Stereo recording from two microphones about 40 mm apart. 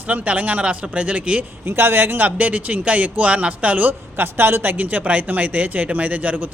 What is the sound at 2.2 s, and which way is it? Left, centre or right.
Speech, right.